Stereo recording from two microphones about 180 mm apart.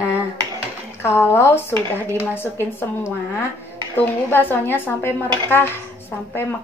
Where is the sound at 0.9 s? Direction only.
15° left (ahead or behind).